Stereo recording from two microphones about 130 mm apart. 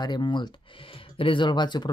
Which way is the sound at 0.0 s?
35° left (ahead or behind).